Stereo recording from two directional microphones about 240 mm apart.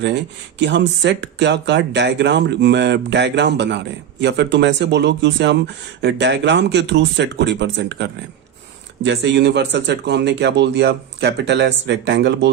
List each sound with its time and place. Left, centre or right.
0.6 s speech: right